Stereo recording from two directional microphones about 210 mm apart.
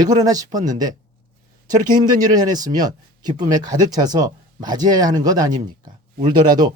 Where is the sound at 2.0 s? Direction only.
20° right (ahead or behind).